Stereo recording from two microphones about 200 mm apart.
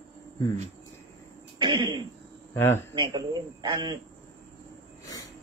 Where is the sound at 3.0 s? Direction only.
20° right (ahead or behind).